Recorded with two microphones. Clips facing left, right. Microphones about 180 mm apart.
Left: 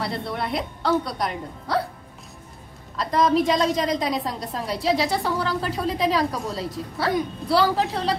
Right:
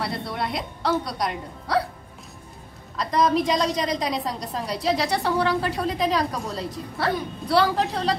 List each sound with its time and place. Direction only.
0.0 s a woman's voice: centre (ahead or behind)
3.0 s a woman's voice: centre (ahead or behind)